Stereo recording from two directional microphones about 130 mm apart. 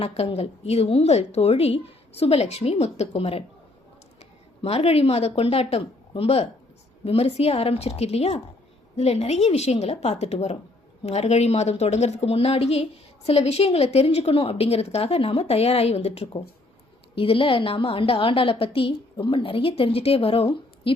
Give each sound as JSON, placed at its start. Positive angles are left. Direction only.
{"t": 0.0, "sound": "a woman's voice", "side_deg": 50}
{"t": 4.6, "sound": "a woman's voice", "side_deg": 50}